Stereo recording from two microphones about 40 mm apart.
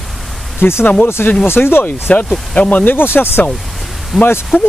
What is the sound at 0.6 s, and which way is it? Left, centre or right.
Speech, left.